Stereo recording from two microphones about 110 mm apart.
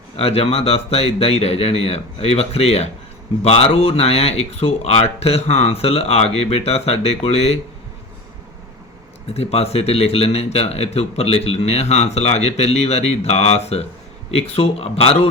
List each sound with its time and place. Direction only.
0.2 s speech: 65° left (ahead or behind)
9.3 s speech: 70° left (ahead or behind)